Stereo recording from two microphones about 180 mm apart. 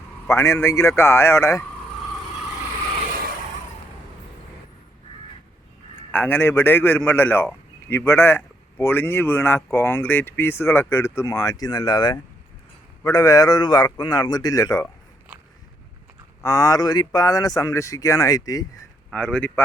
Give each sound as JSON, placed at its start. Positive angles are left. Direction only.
{"t": 0.3, "sound": "a man's voice", "side_deg": 15}
{"t": 6.1, "sound": "a man's voice", "side_deg": 10}
{"t": 16.4, "sound": "speech", "side_deg": 20}
{"t": 19.1, "sound": "a man's voice", "side_deg": 5}